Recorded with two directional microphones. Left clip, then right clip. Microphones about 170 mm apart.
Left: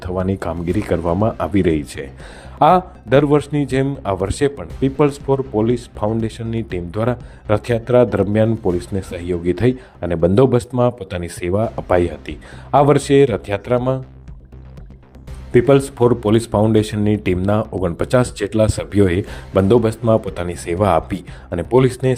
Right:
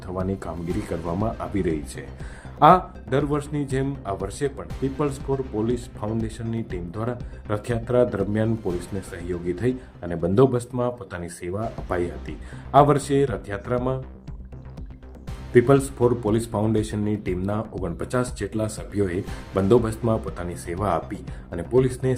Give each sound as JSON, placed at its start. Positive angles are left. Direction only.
{"t": 0.0, "sound": "speech", "side_deg": 40}
{"t": 15.5, "sound": "speech", "side_deg": 40}